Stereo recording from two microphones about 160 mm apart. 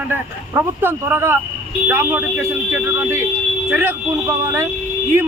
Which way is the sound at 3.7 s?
15° right (ahead or behind).